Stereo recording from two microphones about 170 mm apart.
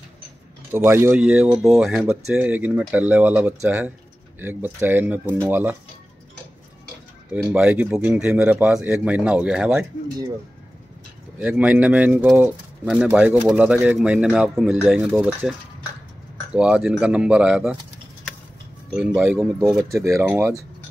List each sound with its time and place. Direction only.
0.7 s speech: 15° right (ahead or behind)
7.2 s speech: 5° right (ahead or behind)
11.3 s speech: 10° right (ahead or behind)
12.8 s speech: centre (ahead or behind)
16.5 s speech: 5° right (ahead or behind)
18.9 s speech: 5° right (ahead or behind)
19.9 s speech: 15° right (ahead or behind)